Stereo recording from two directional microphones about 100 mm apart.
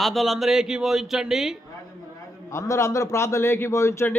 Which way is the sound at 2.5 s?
30° left (ahead or behind).